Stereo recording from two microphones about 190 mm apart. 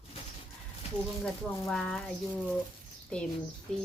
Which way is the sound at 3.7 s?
5° left (ahead or behind).